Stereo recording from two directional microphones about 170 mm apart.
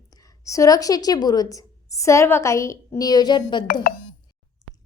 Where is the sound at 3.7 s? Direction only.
55° left (ahead or behind).